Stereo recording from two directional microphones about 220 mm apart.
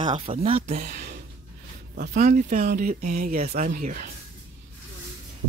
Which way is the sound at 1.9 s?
45° right (ahead or behind).